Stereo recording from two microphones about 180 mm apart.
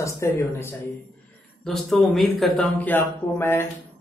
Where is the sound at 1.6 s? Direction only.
Centre (ahead or behind).